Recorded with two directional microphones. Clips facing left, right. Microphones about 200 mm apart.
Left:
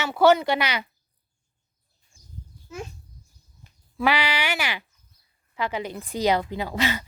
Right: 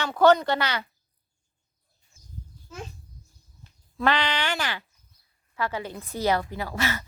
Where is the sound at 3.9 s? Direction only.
10° left (ahead or behind).